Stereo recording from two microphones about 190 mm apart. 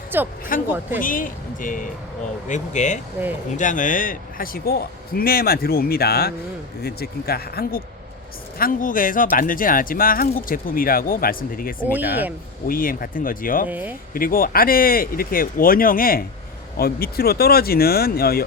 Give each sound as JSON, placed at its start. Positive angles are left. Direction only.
{"t": 0.1, "sound": "speech", "side_deg": -10}
{"t": 0.5, "sound": "speech", "side_deg": 45}
{"t": 11.9, "sound": "speech", "side_deg": -10}
{"t": 12.6, "sound": "speech", "side_deg": 50}
{"t": 13.7, "sound": "speech", "side_deg": -10}
{"t": 14.1, "sound": "speech", "side_deg": 50}